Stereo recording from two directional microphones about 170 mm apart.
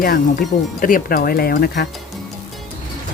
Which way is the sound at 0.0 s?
60° left (ahead or behind).